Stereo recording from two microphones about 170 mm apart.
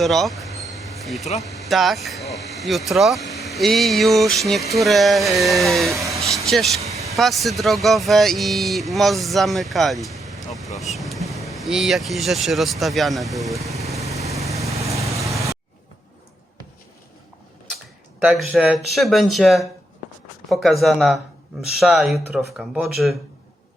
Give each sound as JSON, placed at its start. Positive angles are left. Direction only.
{"t": 0.0, "sound": "speech", "side_deg": 0}
{"t": 6.0, "sound": "a sound", "side_deg": -20}
{"t": 6.4, "sound": "speech", "side_deg": 0}
{"t": 14.0, "sound": "vehicle", "side_deg": -20}
{"t": 18.2, "sound": "speech", "side_deg": -5}